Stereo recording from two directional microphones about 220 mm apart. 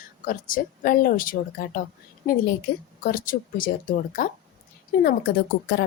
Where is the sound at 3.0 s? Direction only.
40° left (ahead or behind).